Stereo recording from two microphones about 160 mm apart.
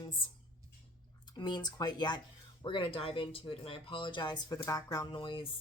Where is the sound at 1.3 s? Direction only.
30° left (ahead or behind).